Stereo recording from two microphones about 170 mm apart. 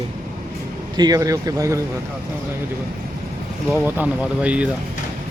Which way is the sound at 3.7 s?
10° right (ahead or behind).